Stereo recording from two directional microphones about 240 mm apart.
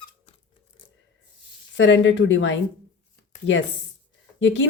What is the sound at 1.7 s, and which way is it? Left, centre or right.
Speech, left.